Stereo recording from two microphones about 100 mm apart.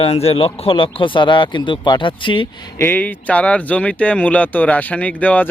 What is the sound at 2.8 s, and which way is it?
Speech, 20° left (ahead or behind).